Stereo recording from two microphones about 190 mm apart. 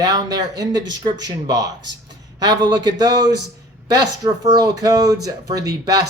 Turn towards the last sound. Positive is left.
turn(degrees=-20)  # may be behind; listen again after turning